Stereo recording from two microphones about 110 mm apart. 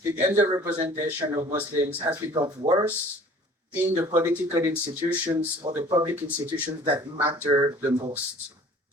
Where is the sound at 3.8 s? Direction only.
30° right (ahead or behind).